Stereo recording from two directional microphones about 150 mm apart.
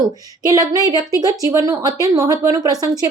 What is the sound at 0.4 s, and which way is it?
A woman's voice, 25° right (ahead or behind).